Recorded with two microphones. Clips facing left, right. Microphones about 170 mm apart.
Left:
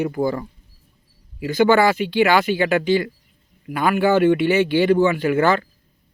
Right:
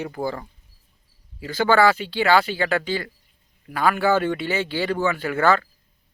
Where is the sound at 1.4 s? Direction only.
15° left (ahead or behind).